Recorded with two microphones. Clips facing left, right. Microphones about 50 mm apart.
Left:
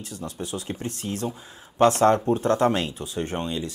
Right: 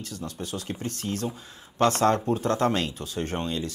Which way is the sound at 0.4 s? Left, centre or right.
Left.